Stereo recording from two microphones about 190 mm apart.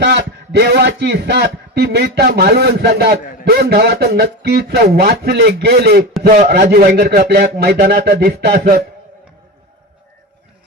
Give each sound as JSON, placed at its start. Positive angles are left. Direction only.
{"t": 0.0, "sound": "a man's voice", "side_deg": -65}